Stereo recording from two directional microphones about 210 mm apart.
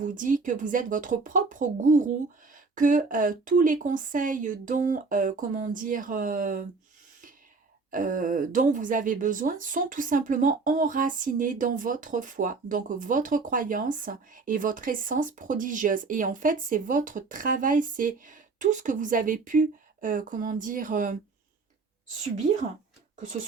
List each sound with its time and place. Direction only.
0.0 s speech: 40° right (ahead or behind)
7.9 s speech: 40° right (ahead or behind)
23.1 s speech: 40° right (ahead or behind)